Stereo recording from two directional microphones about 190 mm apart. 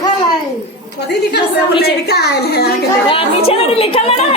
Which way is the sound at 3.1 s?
30° left (ahead or behind).